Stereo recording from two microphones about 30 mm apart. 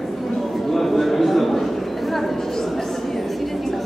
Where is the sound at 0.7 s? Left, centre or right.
Centre.